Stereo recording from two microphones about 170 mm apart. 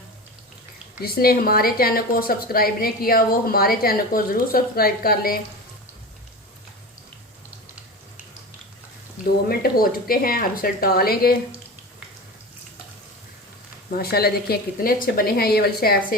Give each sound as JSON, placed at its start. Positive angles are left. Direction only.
{"t": 1.0, "sound": "a woman's voice", "side_deg": 65}
{"t": 9.5, "sound": "a woman's voice", "side_deg": 60}
{"t": 13.9, "sound": "a woman's voice", "side_deg": 65}